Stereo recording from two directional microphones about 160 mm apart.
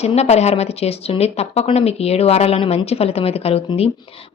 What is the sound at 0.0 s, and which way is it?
Speech, 40° left (ahead or behind).